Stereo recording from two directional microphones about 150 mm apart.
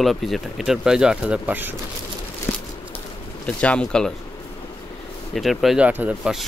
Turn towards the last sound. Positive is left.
turn(degrees=-5)  # may be behind; listen again after turning